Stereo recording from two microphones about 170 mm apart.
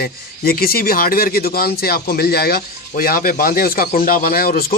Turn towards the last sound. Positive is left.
turn(degrees=60)  # may be behind; listen again after turning